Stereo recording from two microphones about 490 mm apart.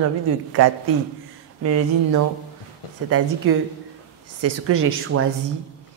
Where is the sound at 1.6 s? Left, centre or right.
Right.